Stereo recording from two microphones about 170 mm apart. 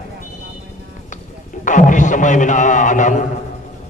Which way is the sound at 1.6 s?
50° left (ahead or behind).